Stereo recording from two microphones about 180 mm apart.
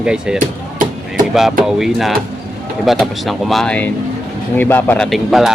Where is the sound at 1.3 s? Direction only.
Centre (ahead or behind).